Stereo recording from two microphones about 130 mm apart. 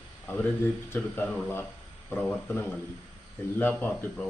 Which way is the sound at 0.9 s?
15° left (ahead or behind).